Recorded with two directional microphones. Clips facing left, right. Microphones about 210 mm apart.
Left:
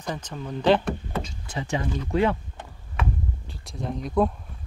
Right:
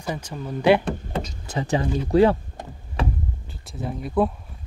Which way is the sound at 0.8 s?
35° right (ahead or behind).